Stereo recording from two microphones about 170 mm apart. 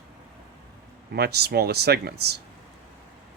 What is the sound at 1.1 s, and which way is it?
Speech, 70° right (ahead or behind).